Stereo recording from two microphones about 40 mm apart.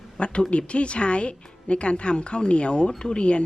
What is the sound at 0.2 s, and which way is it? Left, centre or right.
Speech, left.